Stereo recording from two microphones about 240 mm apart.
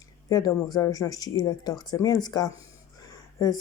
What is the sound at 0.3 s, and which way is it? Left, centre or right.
Speech, centre.